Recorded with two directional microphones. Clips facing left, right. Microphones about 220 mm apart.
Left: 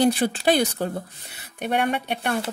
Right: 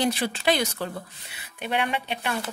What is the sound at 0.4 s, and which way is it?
Speech, 40° left (ahead or behind).